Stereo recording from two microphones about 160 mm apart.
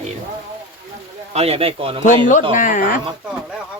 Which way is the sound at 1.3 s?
40° right (ahead or behind).